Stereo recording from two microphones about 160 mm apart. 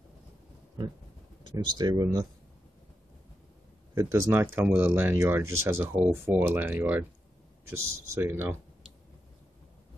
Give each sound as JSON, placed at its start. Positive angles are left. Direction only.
{"t": 1.5, "sound": "speech", "side_deg": -30}
{"t": 3.9, "sound": "speech", "side_deg": -20}